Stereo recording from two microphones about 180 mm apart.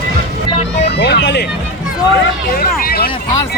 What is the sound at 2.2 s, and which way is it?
Speech, 55° left (ahead or behind).